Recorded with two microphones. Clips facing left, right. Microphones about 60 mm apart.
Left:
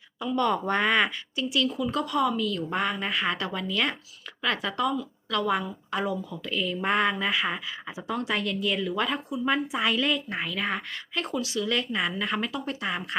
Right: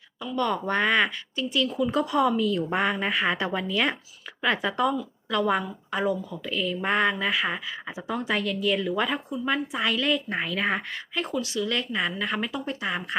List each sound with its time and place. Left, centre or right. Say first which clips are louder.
0.2 s a woman's voice: left 1 dB; centre
1.9 s speech: right 3 dB; centre
2.8 s speech: right 1 dB; centre
3.4 s a woman's voice: right 3 dB; centre